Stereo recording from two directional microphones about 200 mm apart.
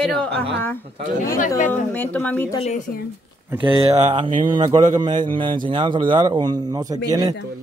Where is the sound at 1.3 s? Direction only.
40° left (ahead or behind).